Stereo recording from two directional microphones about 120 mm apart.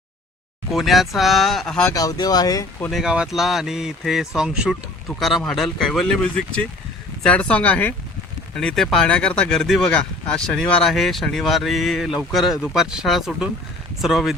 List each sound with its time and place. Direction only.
0.7 s speech: centre (ahead or behind)
1.9 s speech: 30° left (ahead or behind)
2.9 s speech: 5° right (ahead or behind)